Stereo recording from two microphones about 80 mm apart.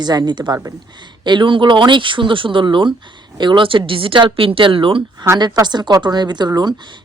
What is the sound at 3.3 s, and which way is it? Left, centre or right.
Speech, right.